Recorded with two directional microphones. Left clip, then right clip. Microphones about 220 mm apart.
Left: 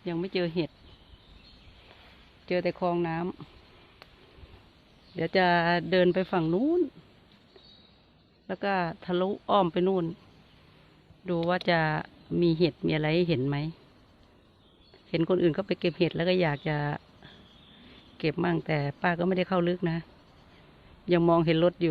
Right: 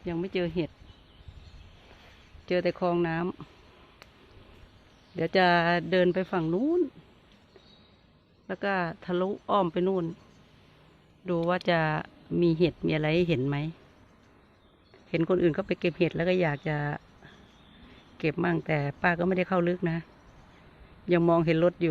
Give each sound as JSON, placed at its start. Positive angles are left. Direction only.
{"t": 0.0, "sound": "speech", "side_deg": 0}
{"t": 2.5, "sound": "speech", "side_deg": -10}
{"t": 5.1, "sound": "speech", "side_deg": -5}
{"t": 5.9, "sound": "speech", "side_deg": 15}
{"t": 8.4, "sound": "speech", "side_deg": 10}
{"t": 11.3, "sound": "speech", "side_deg": 0}
{"t": 15.1, "sound": "speech", "side_deg": 0}
{"t": 21.1, "sound": "speech", "side_deg": 0}